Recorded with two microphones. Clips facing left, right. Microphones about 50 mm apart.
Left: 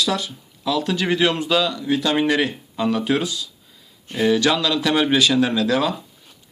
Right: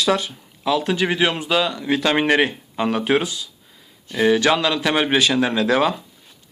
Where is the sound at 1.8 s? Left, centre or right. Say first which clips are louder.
Right 1 dB; right.